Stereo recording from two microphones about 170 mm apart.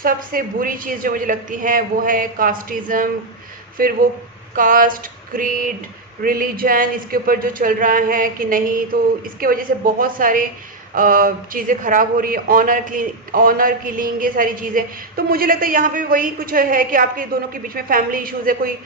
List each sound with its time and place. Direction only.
0.0 s a man's voice: 55° right (ahead or behind)
4.5 s a sound: 55° right (ahead or behind)
6.2 s a man's voice: 60° right (ahead or behind)